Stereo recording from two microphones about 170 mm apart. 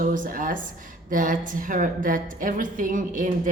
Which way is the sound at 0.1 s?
50° right (ahead or behind).